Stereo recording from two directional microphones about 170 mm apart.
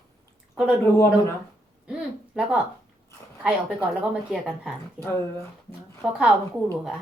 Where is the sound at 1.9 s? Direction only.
5° right (ahead or behind).